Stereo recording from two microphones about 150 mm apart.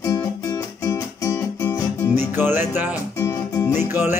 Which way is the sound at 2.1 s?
15° right (ahead or behind).